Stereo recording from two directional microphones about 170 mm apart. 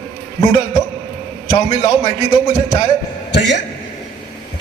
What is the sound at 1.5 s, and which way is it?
Speech, 35° left (ahead or behind).